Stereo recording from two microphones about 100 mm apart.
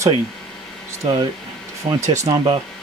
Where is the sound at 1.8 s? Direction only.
90° right.